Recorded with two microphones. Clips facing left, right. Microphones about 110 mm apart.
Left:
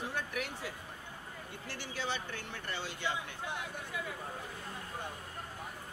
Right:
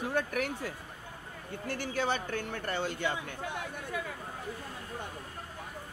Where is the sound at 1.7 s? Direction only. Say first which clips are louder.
Right 7 dB; 50° right (ahead or behind).